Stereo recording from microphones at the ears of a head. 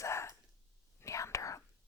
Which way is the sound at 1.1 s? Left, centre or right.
Left.